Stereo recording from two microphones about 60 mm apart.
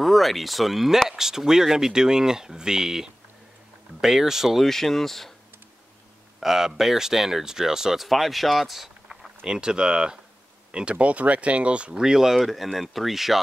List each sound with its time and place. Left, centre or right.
0.0 s speech: centre
6.4 s speech: centre